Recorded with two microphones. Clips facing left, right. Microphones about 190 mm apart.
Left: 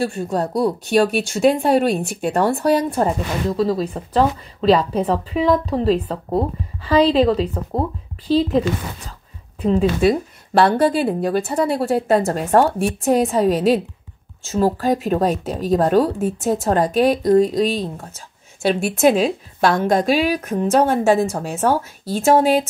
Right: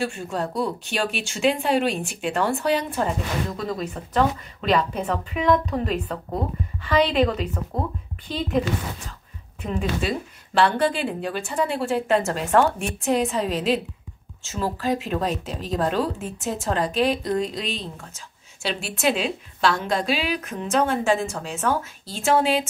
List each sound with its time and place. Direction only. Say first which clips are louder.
0.0 s a woman's voice: left 6 dB; 35° left (ahead or behind)